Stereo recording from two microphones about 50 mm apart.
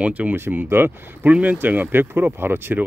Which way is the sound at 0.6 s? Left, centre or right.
Right.